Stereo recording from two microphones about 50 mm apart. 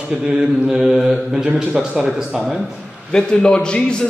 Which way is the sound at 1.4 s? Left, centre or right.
Right.